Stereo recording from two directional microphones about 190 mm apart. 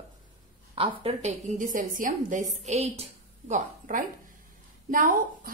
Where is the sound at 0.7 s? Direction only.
30° right (ahead or behind).